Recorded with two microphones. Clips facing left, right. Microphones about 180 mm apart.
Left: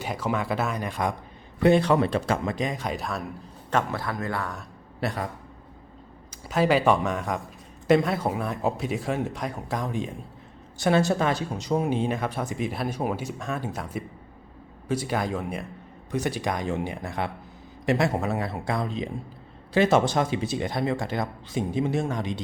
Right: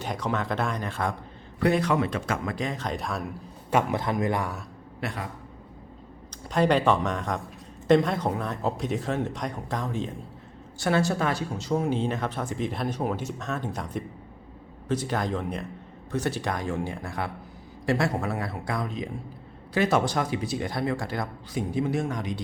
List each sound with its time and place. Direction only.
0.0 s speech: 5° left (ahead or behind)
1.6 s speech: 30° left (ahead or behind)
2.6 s speech: 15° left (ahead or behind)
3.7 s speech: 15° right (ahead or behind)
4.9 s a man's voice: 35° left (ahead or behind)
6.5 s speech: 5° left (ahead or behind); by 22.4 s 25° left (ahead or behind)